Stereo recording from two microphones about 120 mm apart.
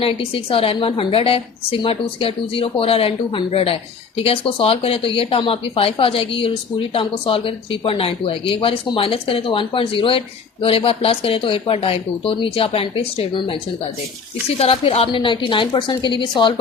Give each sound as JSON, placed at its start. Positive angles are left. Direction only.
{"t": 0.0, "sound": "speech", "side_deg": 50}
{"t": 14.6, "sound": "speech", "side_deg": 55}